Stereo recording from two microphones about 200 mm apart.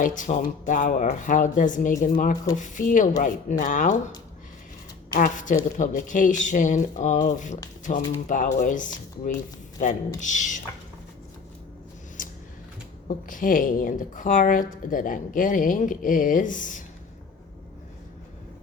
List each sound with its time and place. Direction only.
0.0 s a woman's voice: 40° left (ahead or behind)
5.1 s a woman's voice: 40° left (ahead or behind)
13.1 s a woman's voice: 40° left (ahead or behind)